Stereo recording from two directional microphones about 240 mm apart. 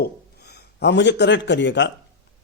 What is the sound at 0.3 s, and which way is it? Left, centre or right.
A man's voice, left.